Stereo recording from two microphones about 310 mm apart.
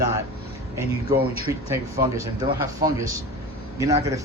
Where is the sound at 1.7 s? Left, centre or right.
Centre.